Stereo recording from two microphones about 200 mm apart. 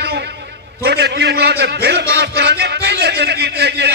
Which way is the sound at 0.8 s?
55° right (ahead or behind).